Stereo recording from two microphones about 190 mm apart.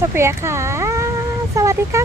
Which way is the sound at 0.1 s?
15° right (ahead or behind).